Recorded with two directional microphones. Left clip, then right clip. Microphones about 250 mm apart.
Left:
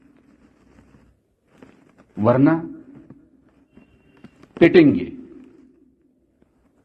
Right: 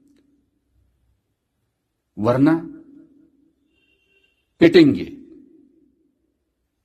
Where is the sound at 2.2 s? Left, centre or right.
Right.